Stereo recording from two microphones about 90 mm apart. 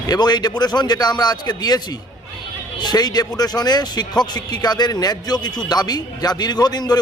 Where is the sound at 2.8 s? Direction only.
50° left (ahead or behind).